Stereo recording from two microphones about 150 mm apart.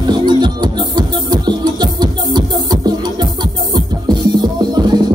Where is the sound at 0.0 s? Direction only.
30° right (ahead or behind).